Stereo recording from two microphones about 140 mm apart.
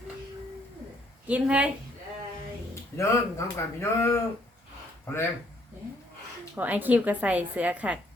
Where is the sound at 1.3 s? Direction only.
10° right (ahead or behind).